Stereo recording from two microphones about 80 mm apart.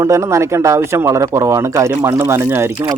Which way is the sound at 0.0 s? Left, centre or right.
Right.